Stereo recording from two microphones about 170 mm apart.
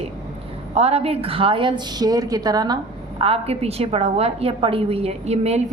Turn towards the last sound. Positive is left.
turn(degrees=-40)  # may be behind; listen again after turning